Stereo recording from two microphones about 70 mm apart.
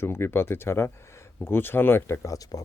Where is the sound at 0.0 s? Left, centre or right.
Left.